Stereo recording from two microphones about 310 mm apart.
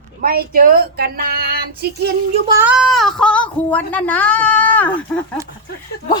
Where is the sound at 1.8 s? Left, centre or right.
Right.